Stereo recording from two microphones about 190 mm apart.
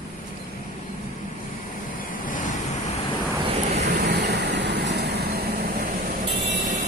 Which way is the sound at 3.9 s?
60° right (ahead or behind).